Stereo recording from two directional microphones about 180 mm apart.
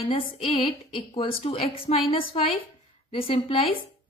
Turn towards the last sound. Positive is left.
turn(degrees=30)  # may be behind; listen again after turning